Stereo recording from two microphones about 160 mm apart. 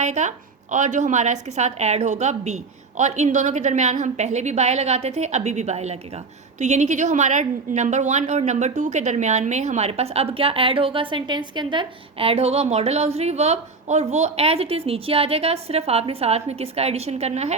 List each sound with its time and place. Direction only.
0.0 s a woman's voice: 45° right (ahead or behind)